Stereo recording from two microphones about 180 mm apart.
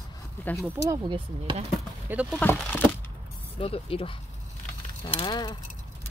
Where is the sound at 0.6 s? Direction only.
20° right (ahead or behind).